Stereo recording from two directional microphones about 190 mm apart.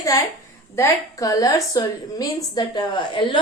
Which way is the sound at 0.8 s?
20° left (ahead or behind).